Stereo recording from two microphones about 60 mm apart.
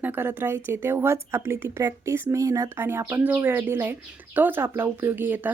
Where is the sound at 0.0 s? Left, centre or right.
Right.